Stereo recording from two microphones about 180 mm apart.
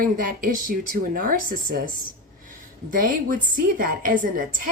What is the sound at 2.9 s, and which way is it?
Speech, 50° right (ahead or behind).